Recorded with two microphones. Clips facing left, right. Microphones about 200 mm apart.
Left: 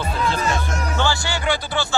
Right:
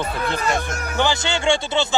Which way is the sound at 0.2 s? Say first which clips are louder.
Left 1 dB; 55° right (ahead or behind).